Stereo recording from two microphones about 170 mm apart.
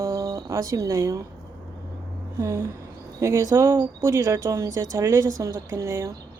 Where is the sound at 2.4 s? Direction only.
20° right (ahead or behind).